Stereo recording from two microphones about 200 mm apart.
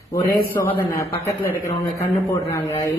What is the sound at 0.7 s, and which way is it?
A man's voice, 15° left (ahead or behind).